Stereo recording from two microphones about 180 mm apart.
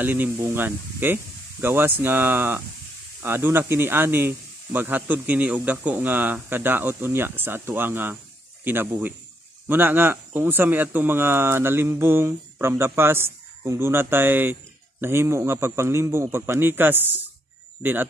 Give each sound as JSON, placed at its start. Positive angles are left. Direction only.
{"t": 0.0, "sound": "speech", "side_deg": -10}